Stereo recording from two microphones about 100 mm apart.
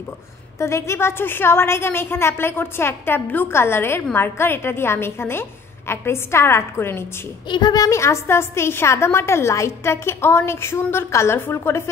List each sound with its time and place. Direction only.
0.6 s a woman's voice: 30° left (ahead or behind)
7.4 s a woman's voice: 50° left (ahead or behind); by 11.9 s 25° left (ahead or behind)